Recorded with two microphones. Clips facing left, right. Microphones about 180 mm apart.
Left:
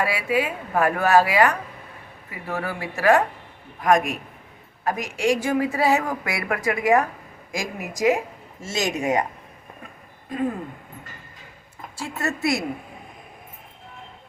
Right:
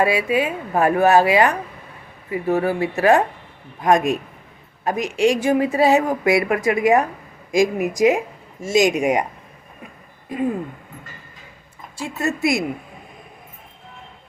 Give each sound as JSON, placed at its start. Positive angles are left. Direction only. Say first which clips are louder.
{"t": 0.0, "sound": "speech", "louder": "right 5 dB", "side_deg": -20}
{"t": 11.9, "sound": "speech", "louder": "right 4 dB", "side_deg": -15}